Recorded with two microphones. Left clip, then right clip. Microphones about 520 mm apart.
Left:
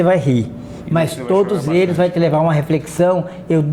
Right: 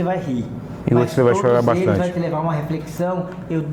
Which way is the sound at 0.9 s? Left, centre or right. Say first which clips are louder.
Even; right.